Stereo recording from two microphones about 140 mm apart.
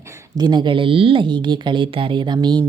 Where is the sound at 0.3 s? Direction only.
30° right (ahead or behind).